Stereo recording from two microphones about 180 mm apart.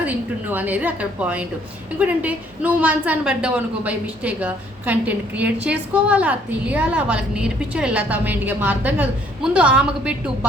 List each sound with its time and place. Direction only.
0.0 s a woman's voice: 10° right (ahead or behind)